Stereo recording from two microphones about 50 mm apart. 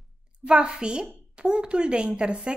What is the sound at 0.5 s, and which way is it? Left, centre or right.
A woman's voice, centre.